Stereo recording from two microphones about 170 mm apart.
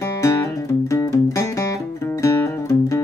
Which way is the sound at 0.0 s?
20° left (ahead or behind).